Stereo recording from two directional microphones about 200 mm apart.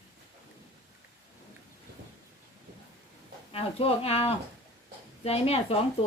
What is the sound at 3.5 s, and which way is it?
Speech, 30° left (ahead or behind).